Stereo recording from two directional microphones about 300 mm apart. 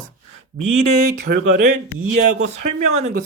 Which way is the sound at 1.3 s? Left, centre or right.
Right.